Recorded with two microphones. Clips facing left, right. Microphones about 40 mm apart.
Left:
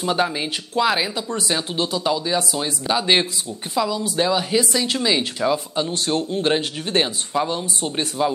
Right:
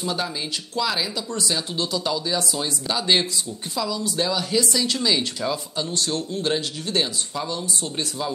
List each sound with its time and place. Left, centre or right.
0.0 s speech: left